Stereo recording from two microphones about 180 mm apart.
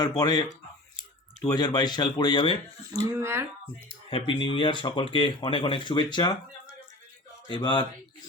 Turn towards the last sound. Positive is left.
turn(degrees=25)  # may be behind; listen again after turning